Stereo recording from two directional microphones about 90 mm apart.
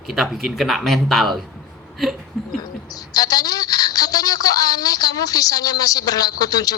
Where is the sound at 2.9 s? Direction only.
45° left (ahead or behind).